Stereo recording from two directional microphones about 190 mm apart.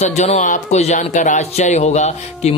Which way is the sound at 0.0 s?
35° left (ahead or behind).